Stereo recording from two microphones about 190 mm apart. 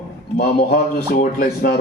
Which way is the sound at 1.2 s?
45° left (ahead or behind).